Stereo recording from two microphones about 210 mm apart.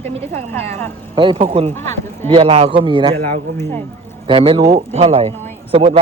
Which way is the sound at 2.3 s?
30° right (ahead or behind).